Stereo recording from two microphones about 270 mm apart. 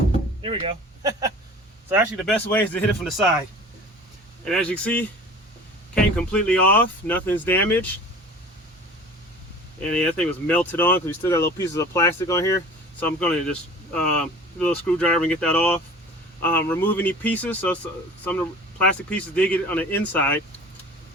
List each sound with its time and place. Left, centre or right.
0.4 s speech: centre
1.9 s speech: centre
4.4 s speech: centre
9.9 s speech: centre